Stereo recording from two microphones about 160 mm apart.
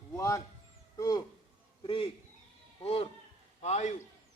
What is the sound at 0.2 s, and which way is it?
A man's voice, 20° left (ahead or behind).